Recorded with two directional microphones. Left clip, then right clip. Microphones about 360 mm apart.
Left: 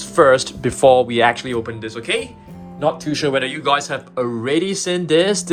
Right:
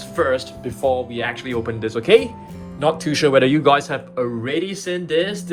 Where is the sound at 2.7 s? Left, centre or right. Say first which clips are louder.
Right 1 dB; centre.